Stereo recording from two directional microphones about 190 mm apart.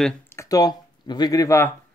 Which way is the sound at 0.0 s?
10° left (ahead or behind).